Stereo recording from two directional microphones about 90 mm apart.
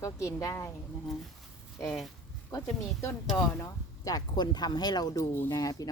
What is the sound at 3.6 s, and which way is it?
Speech, 40° left (ahead or behind).